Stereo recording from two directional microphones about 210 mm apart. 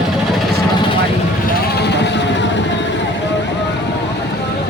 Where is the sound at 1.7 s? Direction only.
55° left (ahead or behind).